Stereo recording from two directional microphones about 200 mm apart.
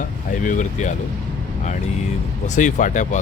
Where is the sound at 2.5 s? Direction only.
40° left (ahead or behind).